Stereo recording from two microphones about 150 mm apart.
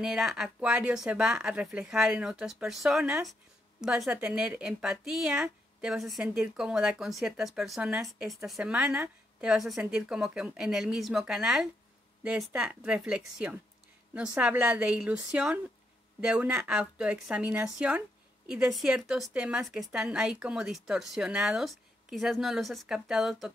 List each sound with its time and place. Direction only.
0.0 s a woman's voice: centre (ahead or behind)